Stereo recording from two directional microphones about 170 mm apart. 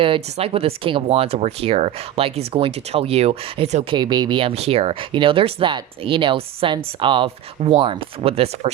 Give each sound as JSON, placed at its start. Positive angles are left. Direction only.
{"t": 0.0, "sound": "speech", "side_deg": -35}
{"t": 3.9, "sound": "speech", "side_deg": -25}